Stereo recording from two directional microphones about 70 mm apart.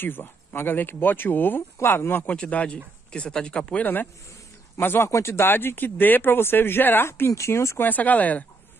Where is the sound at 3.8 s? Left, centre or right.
Left.